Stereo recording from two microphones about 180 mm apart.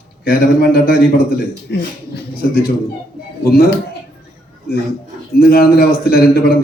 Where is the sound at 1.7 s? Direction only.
75° left (ahead or behind).